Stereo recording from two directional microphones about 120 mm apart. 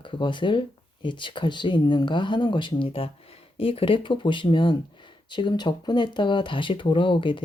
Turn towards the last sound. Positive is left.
turn(degrees=45)  # may be behind; listen again after turning